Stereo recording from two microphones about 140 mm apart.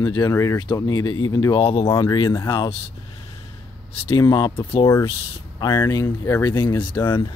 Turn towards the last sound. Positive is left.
turn(degrees=35)  # may be behind; listen again after turning